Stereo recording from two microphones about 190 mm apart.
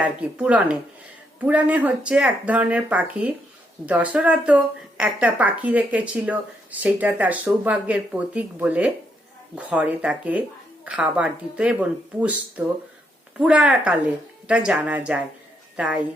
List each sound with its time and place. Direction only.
0.0 s a woman's voice: 5° right (ahead or behind)
13.4 s a woman's voice: 5° right (ahead or behind)